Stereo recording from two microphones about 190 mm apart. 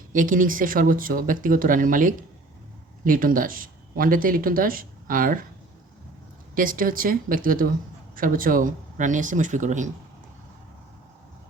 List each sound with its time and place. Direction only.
0.1 s speech: 45° right (ahead or behind)
6.5 s speech: 45° right (ahead or behind)